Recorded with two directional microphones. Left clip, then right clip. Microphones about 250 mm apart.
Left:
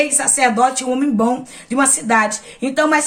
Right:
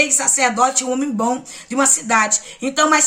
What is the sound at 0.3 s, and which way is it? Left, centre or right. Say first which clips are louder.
A woman's voice: left 2 dB; centre.